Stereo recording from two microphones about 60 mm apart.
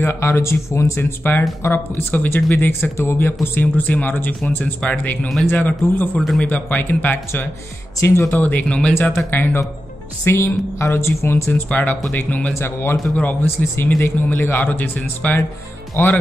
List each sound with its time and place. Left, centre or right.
0.0 s speech: left
1.2 s speech: left
3.6 s speech: left
8.0 s speech: left
8.3 s speech: left
8.6 s speech: centre
9.1 s speech: left
11.7 s speech: left
12.5 s speech: left
13.1 s speech: left
16.0 s speech: left